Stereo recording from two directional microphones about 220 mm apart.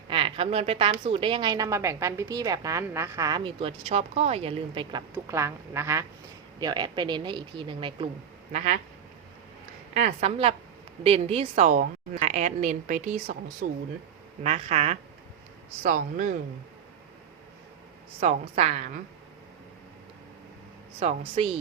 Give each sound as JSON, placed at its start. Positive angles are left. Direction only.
{"t": 0.1, "sound": "a woman's voice", "side_deg": -25}
{"t": 8.5, "sound": "a woman's voice", "side_deg": -35}
{"t": 9.9, "sound": "a woman's voice", "side_deg": -30}
{"t": 14.4, "sound": "a woman's voice", "side_deg": -30}
{"t": 18.2, "sound": "a woman's voice", "side_deg": -30}
{"t": 21.0, "sound": "a woman's voice", "side_deg": -30}